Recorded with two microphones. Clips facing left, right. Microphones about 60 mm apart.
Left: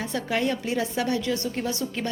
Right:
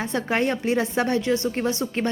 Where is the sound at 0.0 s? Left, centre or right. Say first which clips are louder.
Right 3 dB; right.